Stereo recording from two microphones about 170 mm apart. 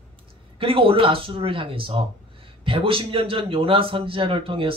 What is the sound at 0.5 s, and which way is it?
A man's voice, 30° right (ahead or behind).